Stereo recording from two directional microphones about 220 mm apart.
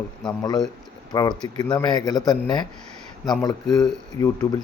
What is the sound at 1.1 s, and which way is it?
Speech, 15° left (ahead or behind).